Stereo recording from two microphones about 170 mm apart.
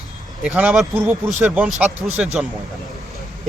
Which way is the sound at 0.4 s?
10° right (ahead or behind).